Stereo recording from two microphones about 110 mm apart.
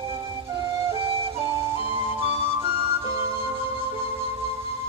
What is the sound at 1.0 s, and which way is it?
Music, 55° right (ahead or behind).